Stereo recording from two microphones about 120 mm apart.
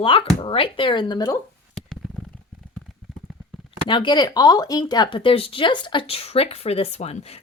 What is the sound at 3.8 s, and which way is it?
A woman's voice, 40° left (ahead or behind).